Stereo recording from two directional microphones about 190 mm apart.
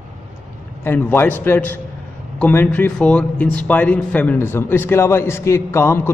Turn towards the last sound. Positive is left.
turn(degrees=15)  # may be behind; listen again after turning